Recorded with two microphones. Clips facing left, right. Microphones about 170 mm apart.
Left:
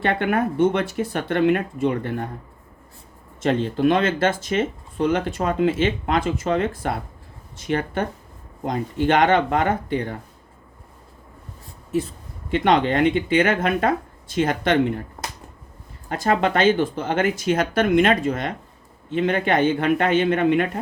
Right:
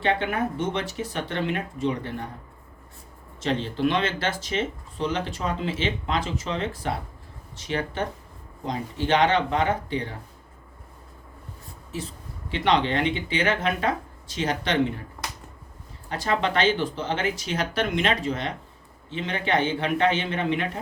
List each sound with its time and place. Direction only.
0.0 s speech: 55° left (ahead or behind)
3.4 s speech: 50° left (ahead or behind)
12.5 s speech: 50° left (ahead or behind)
16.0 s speech: 45° left (ahead or behind)